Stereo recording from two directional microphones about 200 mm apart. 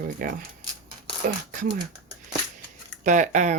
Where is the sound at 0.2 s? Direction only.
45° right (ahead or behind).